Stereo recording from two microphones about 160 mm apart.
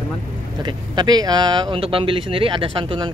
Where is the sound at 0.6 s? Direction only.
25° right (ahead or behind).